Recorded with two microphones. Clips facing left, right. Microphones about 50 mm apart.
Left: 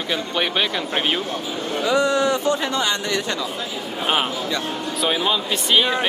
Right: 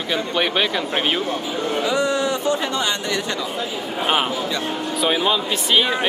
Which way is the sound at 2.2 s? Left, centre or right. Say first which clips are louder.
Left 1 dB; left.